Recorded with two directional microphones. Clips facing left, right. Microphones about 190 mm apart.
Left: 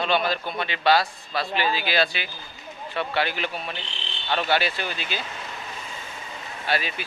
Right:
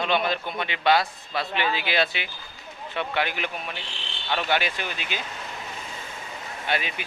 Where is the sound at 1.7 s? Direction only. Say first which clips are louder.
Left 1 dB; 30° left (ahead or behind).